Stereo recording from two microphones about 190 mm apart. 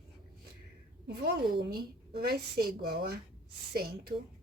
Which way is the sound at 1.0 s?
60° right (ahead or behind).